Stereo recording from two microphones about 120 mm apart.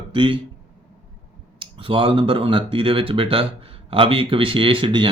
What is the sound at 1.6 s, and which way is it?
Speech, 45° right (ahead or behind).